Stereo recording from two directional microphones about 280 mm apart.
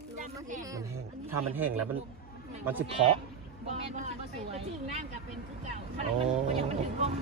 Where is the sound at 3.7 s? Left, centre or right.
Right.